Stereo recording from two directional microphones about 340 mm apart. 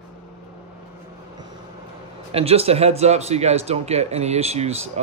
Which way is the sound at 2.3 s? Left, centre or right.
Centre.